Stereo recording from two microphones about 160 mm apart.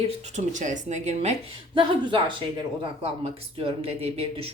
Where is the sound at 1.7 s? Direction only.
30° right (ahead or behind).